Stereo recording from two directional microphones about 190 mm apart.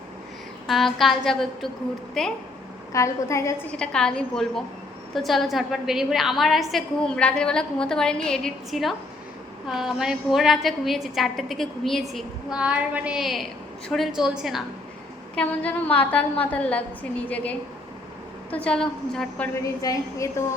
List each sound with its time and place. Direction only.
0.7 s a woman's voice: centre (ahead or behind)
2.9 s a woman's voice: 15° left (ahead or behind)
3.8 s a woman's voice: 5° left (ahead or behind)
18.5 s a woman's voice: 5° left (ahead or behind)
19.8 s a woman's voice: 15° left (ahead or behind)